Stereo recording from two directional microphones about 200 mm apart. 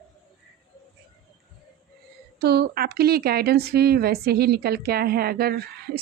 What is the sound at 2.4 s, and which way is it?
Speech, 55° right (ahead or behind).